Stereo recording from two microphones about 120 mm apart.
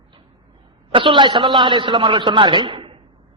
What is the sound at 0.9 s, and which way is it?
A man's voice, 45° right (ahead or behind).